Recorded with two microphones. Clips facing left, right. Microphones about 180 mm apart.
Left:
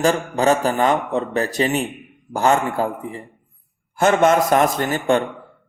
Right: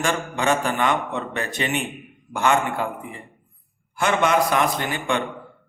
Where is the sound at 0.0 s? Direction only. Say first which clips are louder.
Left 6 dB; 40° left (ahead or behind).